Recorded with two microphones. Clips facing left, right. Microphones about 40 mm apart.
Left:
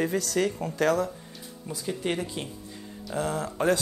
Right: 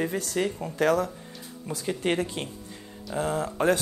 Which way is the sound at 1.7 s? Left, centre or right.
Right.